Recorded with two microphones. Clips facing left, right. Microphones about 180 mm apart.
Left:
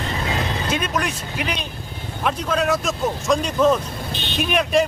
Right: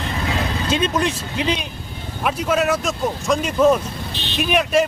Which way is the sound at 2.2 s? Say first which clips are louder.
Right 2 dB; 5° right (ahead or behind).